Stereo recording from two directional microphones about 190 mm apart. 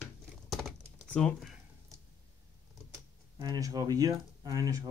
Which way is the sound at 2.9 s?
20° right (ahead or behind).